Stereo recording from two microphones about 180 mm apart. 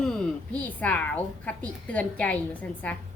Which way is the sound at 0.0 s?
5° left (ahead or behind).